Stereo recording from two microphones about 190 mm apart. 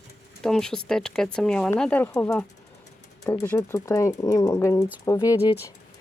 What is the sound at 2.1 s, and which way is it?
Speech, 15° left (ahead or behind).